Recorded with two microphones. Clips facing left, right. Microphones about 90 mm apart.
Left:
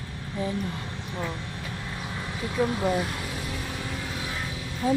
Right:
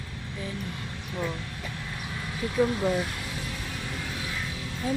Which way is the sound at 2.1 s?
15° left (ahead or behind).